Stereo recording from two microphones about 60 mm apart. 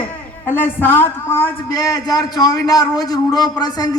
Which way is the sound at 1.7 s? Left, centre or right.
Left.